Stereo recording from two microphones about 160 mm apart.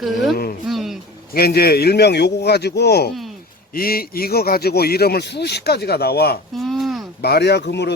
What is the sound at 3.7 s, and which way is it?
A man's voice, 70° left (ahead or behind).